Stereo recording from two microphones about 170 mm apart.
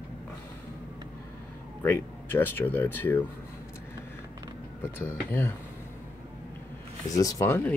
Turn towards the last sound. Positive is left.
turn(degrees=10)  # may be behind; listen again after turning